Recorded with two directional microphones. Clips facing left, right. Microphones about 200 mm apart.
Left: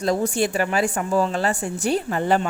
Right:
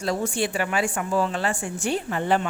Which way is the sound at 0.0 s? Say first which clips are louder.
Left 4 dB; 40° left (ahead or behind).